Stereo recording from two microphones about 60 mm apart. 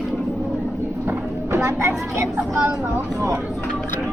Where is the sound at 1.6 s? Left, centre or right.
Right.